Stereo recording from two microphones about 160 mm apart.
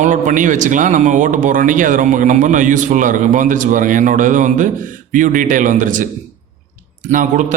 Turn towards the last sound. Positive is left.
turn(degrees=-55)  # may be behind; listen again after turning